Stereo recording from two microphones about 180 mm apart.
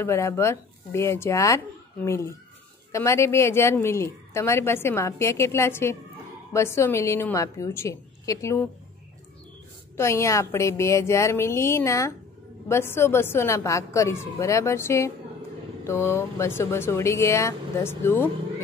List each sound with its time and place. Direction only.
0.0 s a woman's voice: 15° left (ahead or behind)
9.9 s a woman's voice: 15° left (ahead or behind)